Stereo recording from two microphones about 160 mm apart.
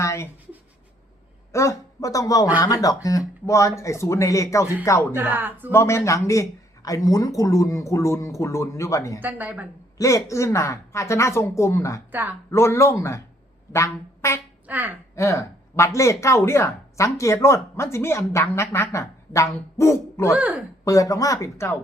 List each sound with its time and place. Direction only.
0.0 s writing: 20° left (ahead or behind)
1.5 s speech: 20° left (ahead or behind)
5.1 s speech: 10° right (ahead or behind)
5.7 s speech: 15° left (ahead or behind)
9.2 s speech: 10° right (ahead or behind)
10.0 s speech: 20° left (ahead or behind)
14.7 s speech: 10° right (ahead or behind)
15.1 s speech: 20° left (ahead or behind)
20.3 s speech: 10° right (ahead or behind)
20.8 s speech: 20° left (ahead or behind)